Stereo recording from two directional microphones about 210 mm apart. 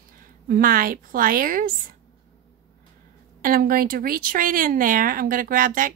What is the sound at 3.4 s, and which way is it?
Speech, 40° right (ahead or behind).